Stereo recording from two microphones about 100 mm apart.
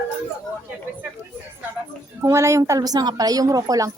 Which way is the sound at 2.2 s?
30° right (ahead or behind).